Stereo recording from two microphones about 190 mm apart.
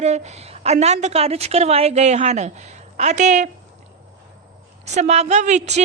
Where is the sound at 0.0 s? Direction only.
35° right (ahead or behind).